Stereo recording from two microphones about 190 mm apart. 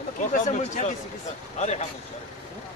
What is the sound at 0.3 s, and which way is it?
Speech, 40° left (ahead or behind).